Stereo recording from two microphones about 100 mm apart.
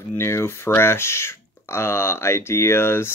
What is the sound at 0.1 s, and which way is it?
Speech, 25° left (ahead or behind).